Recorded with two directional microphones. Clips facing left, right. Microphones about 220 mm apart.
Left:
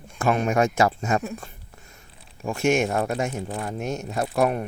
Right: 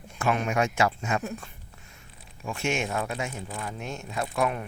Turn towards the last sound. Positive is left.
turn(degrees=40)  # may be behind; listen again after turning